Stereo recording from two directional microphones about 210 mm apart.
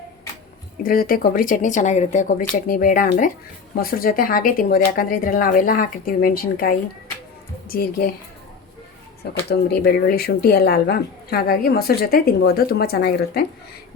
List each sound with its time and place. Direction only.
0.8 s speech: 40° left (ahead or behind)
9.5 s speech: 45° left (ahead or behind)